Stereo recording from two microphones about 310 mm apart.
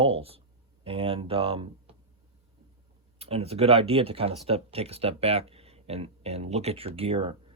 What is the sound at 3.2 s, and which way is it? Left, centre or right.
Speech, centre.